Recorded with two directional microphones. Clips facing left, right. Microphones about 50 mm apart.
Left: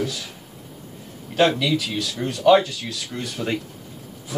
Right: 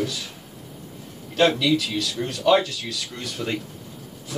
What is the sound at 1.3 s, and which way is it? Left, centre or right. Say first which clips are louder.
Speech: even; centre.